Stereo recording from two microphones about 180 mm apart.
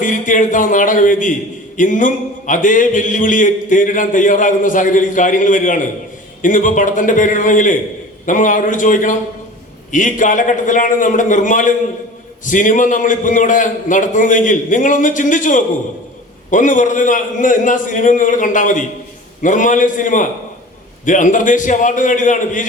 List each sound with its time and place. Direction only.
0.0 s speech: 45° left (ahead or behind)